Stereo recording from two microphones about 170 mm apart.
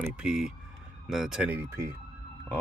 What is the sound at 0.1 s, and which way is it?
Speech, 5° right (ahead or behind).